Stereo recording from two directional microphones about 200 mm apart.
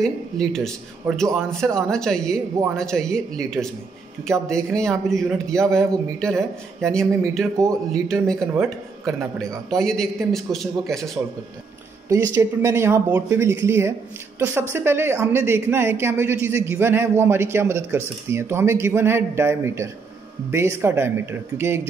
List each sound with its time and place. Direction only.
0.0 s a man's voice: 5° left (ahead or behind)
12.1 s speech: 15° right (ahead or behind)